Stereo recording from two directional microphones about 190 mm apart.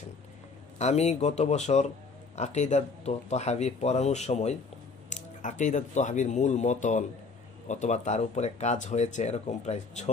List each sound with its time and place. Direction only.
0.7 s speech: 35° left (ahead or behind)